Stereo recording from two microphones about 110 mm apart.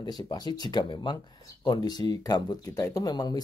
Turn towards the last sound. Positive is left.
turn(degrees=35)  # may be behind; listen again after turning